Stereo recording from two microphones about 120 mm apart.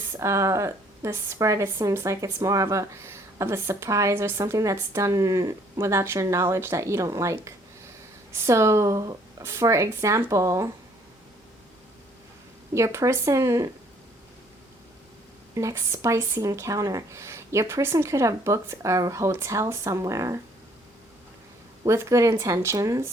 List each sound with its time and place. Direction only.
0.2 s a woman's voice: 25° right (ahead or behind)
12.7 s a woman's voice: 25° right (ahead or behind)
15.5 s a woman's voice: 25° right (ahead or behind)
21.8 s a woman's voice: 25° right (ahead or behind)